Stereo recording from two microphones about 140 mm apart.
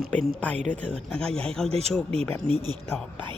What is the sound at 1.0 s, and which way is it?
Speech, 5° left (ahead or behind).